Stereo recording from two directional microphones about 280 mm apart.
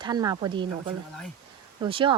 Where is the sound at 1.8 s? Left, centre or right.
Centre.